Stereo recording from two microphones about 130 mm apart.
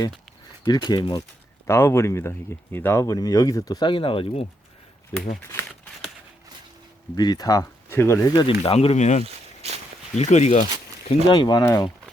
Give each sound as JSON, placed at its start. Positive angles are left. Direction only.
{"t": 0.6, "sound": "speech", "side_deg": 35}
{"t": 1.6, "sound": "speech", "side_deg": 20}
{"t": 5.5, "sound": "crumpling", "side_deg": 20}
{"t": 7.2, "sound": "speech", "side_deg": 30}
{"t": 8.4, "sound": "speech", "side_deg": 45}
{"t": 9.2, "sound": "walk", "side_deg": -50}
{"t": 10.2, "sound": "speech", "side_deg": 60}
{"t": 11.3, "sound": "speech", "side_deg": 35}